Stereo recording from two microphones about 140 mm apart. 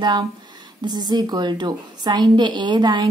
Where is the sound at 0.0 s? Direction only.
30° right (ahead or behind).